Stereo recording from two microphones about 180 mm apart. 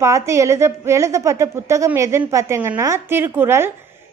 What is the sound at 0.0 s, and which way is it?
A woman's voice, 15° right (ahead or behind).